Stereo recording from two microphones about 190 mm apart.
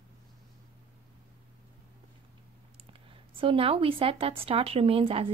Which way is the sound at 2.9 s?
30° right (ahead or behind).